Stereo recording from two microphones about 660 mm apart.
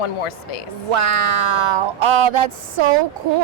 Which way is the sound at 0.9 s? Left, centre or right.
Right.